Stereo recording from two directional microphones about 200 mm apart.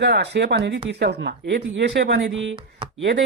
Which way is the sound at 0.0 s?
60° right (ahead or behind).